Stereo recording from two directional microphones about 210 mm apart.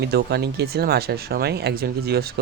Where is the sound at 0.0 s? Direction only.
50° right (ahead or behind).